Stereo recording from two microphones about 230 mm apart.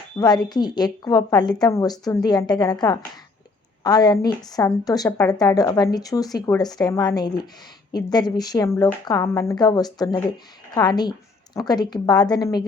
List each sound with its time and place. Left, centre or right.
0.2 s a woman's voice: centre